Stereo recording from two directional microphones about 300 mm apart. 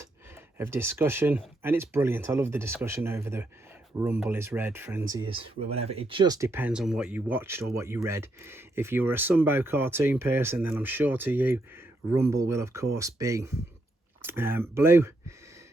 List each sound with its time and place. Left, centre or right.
0.6 s speech: centre